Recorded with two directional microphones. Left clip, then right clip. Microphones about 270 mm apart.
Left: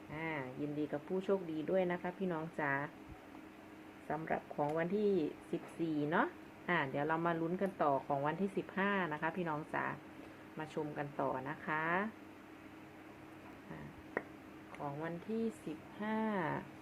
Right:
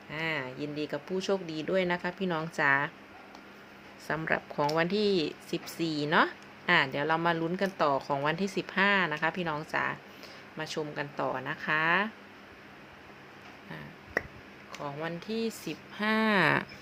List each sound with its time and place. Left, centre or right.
0.1 s speech: centre
4.1 s speech: right
15.0 s speech: centre
16.0 s speech: right